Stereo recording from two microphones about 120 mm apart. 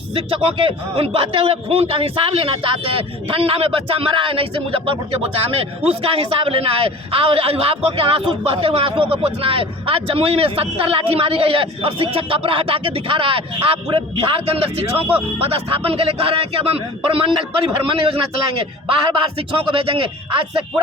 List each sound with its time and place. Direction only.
0.1 s a man's voice: 50° right (ahead or behind)
19.4 s a man's voice: 50° right (ahead or behind)